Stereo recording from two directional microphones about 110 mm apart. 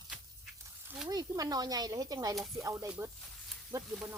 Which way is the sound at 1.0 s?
35° right (ahead or behind).